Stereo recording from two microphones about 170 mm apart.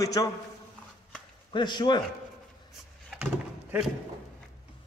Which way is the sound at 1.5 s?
25° left (ahead or behind).